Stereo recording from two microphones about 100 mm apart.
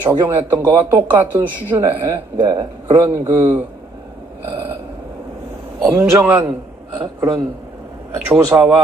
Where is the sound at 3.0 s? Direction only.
25° right (ahead or behind).